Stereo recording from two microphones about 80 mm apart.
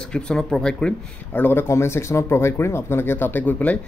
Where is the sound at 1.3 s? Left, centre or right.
Left.